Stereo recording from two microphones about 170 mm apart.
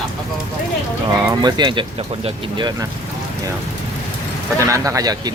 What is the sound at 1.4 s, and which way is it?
Speech, 25° right (ahead or behind).